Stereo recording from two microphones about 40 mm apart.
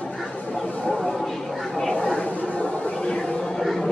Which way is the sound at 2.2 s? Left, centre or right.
Left.